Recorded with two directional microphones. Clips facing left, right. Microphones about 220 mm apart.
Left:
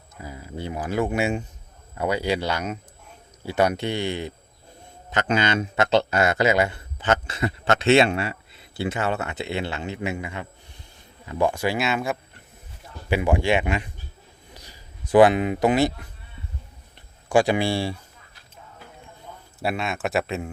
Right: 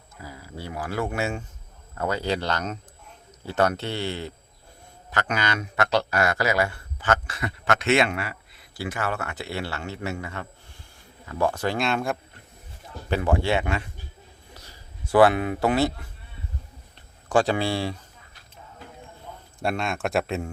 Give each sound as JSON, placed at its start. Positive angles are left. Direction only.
{"t": 0.2, "sound": "a man's voice", "side_deg": 20}
{"t": 14.5, "sound": "a sound", "side_deg": 15}
{"t": 17.2, "sound": "speech", "side_deg": 10}
{"t": 19.6, "sound": "speech", "side_deg": 5}